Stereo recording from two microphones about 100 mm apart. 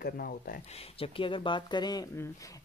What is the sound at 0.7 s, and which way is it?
Speech, 80° left.